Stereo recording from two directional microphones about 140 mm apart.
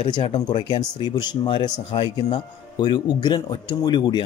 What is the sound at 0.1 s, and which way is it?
Speech, 30° left (ahead or behind).